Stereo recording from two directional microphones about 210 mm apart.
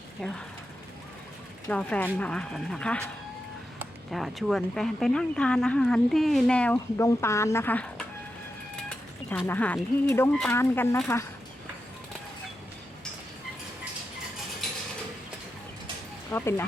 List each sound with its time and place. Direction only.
0.2 s speech: centre (ahead or behind)
1.6 s speech: 5° left (ahead or behind)
4.1 s speech: centre (ahead or behind)
9.5 s speech: 5° left (ahead or behind)
14.6 s a sound: centre (ahead or behind)
16.3 s speech: 10° left (ahead or behind)